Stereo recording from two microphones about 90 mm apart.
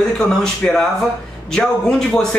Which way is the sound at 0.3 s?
5° left (ahead or behind).